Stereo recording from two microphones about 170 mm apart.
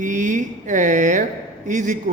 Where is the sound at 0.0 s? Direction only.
45° right (ahead or behind).